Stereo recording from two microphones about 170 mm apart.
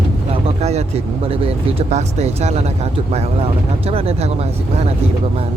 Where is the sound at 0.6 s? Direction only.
40° right (ahead or behind).